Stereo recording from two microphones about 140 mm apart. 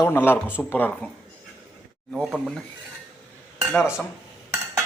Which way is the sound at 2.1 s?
5° right (ahead or behind).